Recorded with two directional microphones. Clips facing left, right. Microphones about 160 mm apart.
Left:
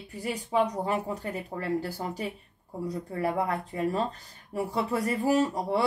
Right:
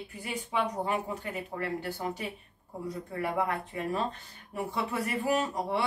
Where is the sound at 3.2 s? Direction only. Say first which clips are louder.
Left 2 dB; 35° left (ahead or behind).